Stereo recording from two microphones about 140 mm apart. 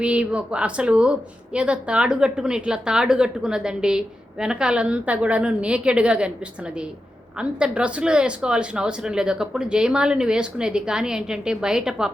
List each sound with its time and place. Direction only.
0.0 s a woman's voice: 10° right (ahead or behind)
7.3 s speech: 5° right (ahead or behind)